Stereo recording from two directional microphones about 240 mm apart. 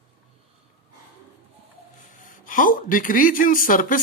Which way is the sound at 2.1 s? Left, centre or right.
Left.